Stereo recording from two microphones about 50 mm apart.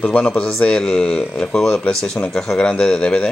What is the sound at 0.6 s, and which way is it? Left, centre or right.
Speech, centre.